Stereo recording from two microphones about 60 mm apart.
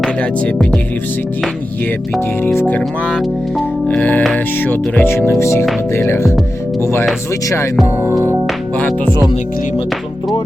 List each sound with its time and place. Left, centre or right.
0.2 s music: centre
2.4 s speech: left
3.8 s speech: left
5.1 s speech: left
8.8 s music: left